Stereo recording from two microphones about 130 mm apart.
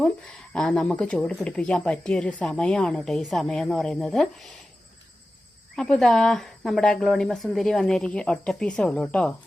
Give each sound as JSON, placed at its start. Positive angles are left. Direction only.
{"t": 0.5, "sound": "speech", "side_deg": 5}
{"t": 5.7, "sound": "speech", "side_deg": 5}